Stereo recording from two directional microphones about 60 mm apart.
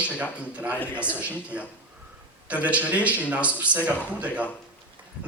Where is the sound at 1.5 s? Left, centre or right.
Right.